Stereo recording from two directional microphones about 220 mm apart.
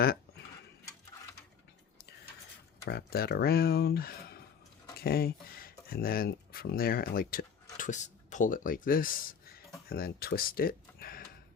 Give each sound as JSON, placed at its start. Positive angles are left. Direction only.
{"t": 2.8, "sound": "speech", "side_deg": 45}